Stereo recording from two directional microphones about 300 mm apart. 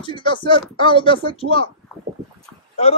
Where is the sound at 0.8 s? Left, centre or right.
Centre.